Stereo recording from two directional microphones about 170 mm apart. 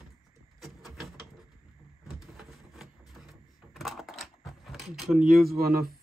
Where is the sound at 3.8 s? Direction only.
Centre (ahead or behind).